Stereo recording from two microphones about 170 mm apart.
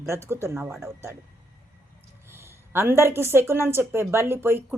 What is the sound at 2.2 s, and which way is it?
A woman's voice, 15° right (ahead or behind).